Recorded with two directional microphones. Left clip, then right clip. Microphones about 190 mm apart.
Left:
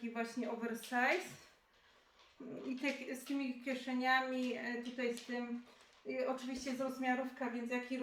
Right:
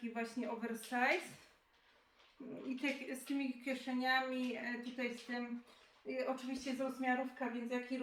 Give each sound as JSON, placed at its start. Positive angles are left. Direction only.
{"t": 0.0, "sound": "a woman's voice", "side_deg": 0}
{"t": 2.6, "sound": "a woman's voice", "side_deg": 0}